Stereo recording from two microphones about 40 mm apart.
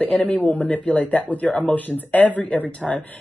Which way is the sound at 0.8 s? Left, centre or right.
Left.